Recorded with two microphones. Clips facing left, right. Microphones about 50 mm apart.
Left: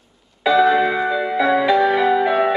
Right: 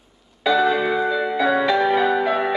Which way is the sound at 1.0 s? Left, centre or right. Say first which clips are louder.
Left 1 dB; centre.